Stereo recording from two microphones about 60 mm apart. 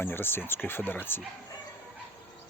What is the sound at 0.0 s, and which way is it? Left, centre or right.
Speech, left.